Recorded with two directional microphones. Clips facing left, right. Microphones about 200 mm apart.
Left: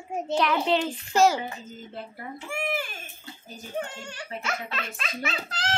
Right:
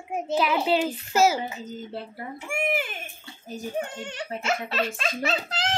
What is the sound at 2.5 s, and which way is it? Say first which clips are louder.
Speech: right 4 dB; 15° right (ahead or behind).